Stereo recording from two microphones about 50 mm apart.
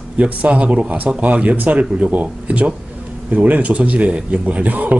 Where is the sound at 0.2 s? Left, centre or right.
Right.